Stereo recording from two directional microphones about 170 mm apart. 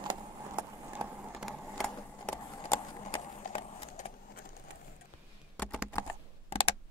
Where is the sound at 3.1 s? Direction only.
40° left (ahead or behind).